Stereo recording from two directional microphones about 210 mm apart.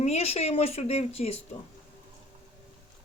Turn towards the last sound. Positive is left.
turn(degrees=30)  # may be behind; listen again after turning